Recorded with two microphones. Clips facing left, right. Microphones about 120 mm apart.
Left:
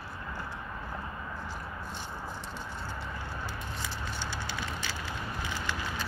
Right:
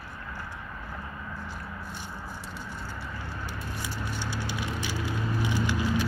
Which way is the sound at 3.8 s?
15° right (ahead or behind).